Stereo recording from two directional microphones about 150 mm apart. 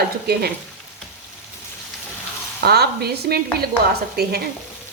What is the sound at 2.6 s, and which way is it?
Speech, 90° right.